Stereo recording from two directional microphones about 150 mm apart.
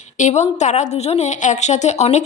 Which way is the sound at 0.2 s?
50° left (ahead or behind).